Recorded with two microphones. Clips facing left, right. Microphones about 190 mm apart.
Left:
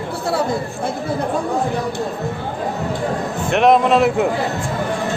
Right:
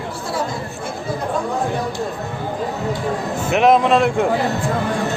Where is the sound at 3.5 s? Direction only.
Centre (ahead or behind).